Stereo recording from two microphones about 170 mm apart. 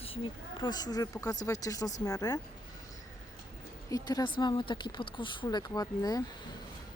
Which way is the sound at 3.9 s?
20° left (ahead or behind).